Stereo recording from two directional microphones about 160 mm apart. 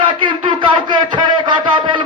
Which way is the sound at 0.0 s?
30° right (ahead or behind).